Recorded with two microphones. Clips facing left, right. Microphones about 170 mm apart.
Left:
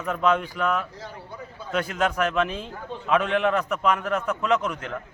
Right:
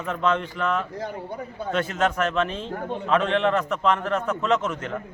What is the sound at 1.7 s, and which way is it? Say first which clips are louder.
Speech: right 1 dB; 5° left (ahead or behind).